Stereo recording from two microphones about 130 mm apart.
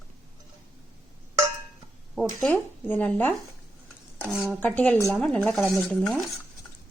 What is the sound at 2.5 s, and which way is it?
Speech, 15° left (ahead or behind).